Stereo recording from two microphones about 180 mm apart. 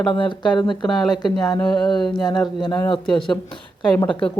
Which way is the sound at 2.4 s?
25° left (ahead or behind).